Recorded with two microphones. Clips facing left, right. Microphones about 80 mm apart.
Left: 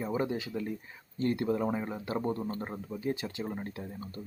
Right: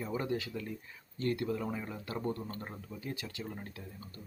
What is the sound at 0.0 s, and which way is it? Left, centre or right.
A man's voice, left.